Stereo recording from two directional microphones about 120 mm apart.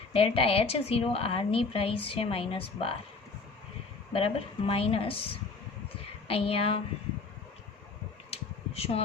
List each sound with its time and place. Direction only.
0.1 s a woman's voice: 50° left (ahead or behind)
4.1 s a woman's voice: 50° left (ahead or behind)
6.2 s a woman's voice: 55° left (ahead or behind)
8.3 s a sound: 55° left (ahead or behind)